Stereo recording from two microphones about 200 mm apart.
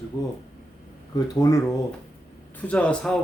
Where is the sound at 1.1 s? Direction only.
15° left (ahead or behind).